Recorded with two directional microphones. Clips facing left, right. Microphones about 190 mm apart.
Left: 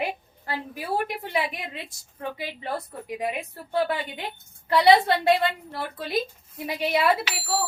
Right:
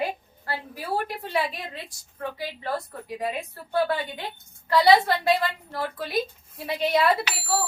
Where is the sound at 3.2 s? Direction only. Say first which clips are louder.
Even; 20° left (ahead or behind).